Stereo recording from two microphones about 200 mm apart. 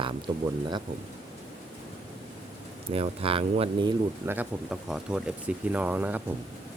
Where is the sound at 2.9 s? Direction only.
30° right (ahead or behind).